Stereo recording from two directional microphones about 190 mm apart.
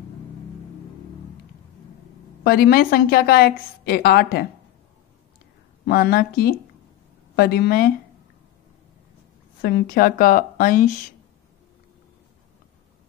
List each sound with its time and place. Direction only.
2.4 s a woman's voice: 55° left (ahead or behind)
5.9 s a woman's voice: 55° left (ahead or behind)
9.6 s speech: 55° left (ahead or behind)